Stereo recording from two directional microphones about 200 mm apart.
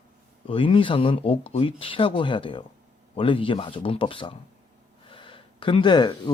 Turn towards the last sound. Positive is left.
turn(degrees=20)  # may be behind; listen again after turning